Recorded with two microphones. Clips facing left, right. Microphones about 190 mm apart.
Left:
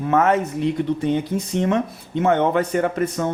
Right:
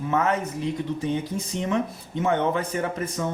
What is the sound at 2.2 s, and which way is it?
A man's voice, 65° left (ahead or behind).